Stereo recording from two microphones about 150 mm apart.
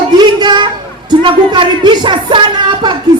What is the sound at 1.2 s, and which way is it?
Speech, 30° right (ahead or behind).